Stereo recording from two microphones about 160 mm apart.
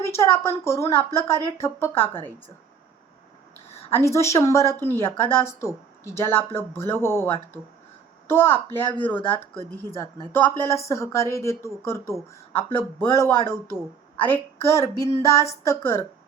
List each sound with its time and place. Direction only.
0.0 s speech: 15° left (ahead or behind)
3.8 s speech: 15° left (ahead or behind)
8.3 s speech: 15° left (ahead or behind)
10.3 s speech: 15° left (ahead or behind)
12.5 s speech: 35° left (ahead or behind)
13.0 s speech: 15° left (ahead or behind)